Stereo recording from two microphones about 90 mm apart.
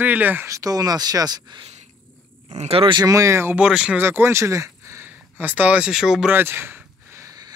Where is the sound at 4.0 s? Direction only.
25° right (ahead or behind).